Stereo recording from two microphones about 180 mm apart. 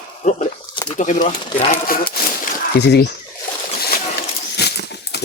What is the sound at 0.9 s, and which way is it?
Speech, 40° left (ahead or behind).